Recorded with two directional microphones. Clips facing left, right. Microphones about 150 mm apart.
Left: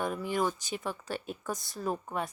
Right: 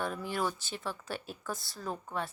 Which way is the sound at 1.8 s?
20° left (ahead or behind).